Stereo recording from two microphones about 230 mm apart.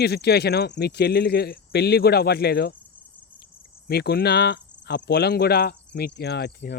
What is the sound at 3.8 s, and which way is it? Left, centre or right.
Speech, left.